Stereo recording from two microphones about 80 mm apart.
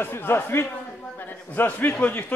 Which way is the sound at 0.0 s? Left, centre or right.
Left.